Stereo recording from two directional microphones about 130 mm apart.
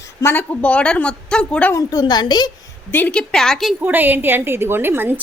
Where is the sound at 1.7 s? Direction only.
30° left (ahead or behind).